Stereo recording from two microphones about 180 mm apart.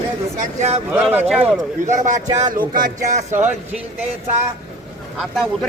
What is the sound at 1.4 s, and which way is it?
Speech, 45° right (ahead or behind).